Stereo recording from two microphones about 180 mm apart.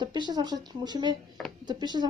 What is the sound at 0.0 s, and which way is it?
Speech, 25° right (ahead or behind).